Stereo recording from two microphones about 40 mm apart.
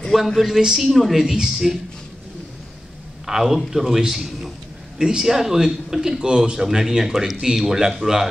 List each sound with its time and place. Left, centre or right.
0.1 s a man's voice: centre
0.8 s speech: centre
1.2 s a man's voice: centre
3.3 s a man's voice: centre